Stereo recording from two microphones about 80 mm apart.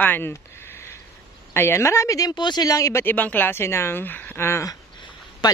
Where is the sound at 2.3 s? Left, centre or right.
Left.